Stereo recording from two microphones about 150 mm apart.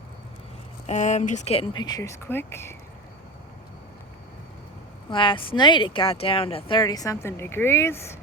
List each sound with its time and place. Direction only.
0.9 s speech: 50° left (ahead or behind)
1.8 s speech: 25° left (ahead or behind)
5.1 s speech: 35° left (ahead or behind); by 8.0 s 15° left (ahead or behind)